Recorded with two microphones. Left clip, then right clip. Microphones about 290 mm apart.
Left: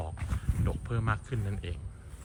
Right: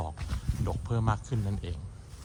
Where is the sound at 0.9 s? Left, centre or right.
Centre.